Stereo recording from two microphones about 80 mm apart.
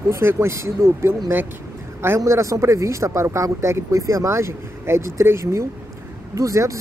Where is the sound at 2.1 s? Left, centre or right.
Right.